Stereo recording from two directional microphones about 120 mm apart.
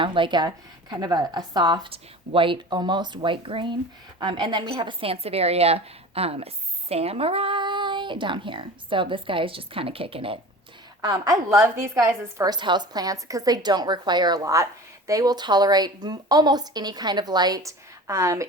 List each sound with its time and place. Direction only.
0.0 s a woman's voice: 45° right (ahead or behind)
11.0 s a woman's voice: 30° right (ahead or behind)